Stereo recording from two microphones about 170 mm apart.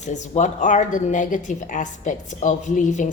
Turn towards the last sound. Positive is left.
turn(degrees=45)  # may be behind; listen again after turning